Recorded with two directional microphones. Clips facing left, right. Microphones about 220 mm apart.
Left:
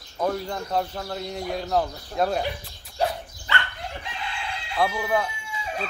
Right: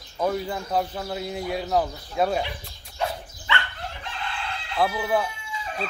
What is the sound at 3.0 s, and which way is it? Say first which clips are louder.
Dog: left 3 dB; 40° left (ahead or behind).